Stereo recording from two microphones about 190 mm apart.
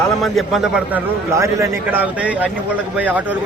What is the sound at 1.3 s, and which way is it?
A man's voice, 15° right (ahead or behind).